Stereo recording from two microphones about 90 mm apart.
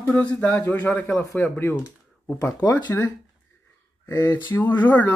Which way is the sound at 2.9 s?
30° left (ahead or behind).